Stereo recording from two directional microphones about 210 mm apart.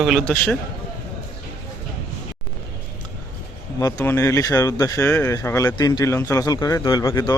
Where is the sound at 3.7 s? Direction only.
15° left (ahead or behind).